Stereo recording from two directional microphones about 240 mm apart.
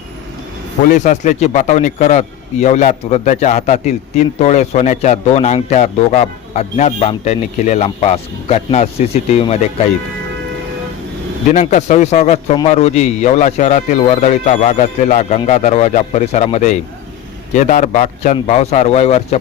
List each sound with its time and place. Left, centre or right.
0.9 s a man's voice: left
11.5 s a man's voice: left